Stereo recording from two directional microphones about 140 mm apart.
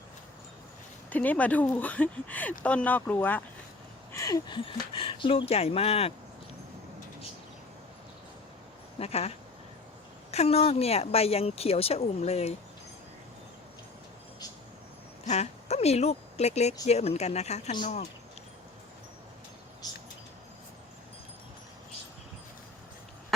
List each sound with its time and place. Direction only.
1.1 s speech: 10° left (ahead or behind)
4.1 s speech: 25° left (ahead or behind); by 6.1 s 45° left (ahead or behind)
9.0 s speech: 45° left (ahead or behind)
10.3 s speech: 45° left (ahead or behind)
15.3 s speech: 50° left (ahead or behind)